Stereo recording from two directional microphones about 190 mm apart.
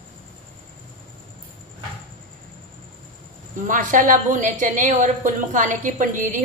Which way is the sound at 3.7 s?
45° right (ahead or behind).